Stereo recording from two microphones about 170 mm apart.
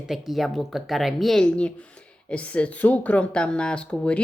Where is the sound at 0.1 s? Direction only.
Centre (ahead or behind).